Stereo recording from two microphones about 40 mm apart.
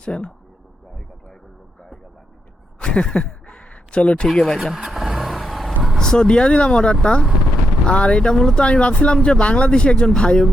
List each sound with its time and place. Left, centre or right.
0.0 s speech: left
2.7 s a sound: left
4.4 s speech: centre
4.6 s vehicle: centre
6.0 s speech: centre
8.2 s speech: centre
8.6 s speech: left